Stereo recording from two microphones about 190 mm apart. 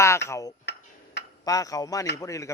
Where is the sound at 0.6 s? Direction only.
65° left (ahead or behind).